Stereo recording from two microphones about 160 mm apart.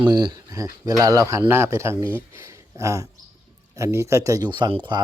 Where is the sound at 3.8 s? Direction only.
20° right (ahead or behind).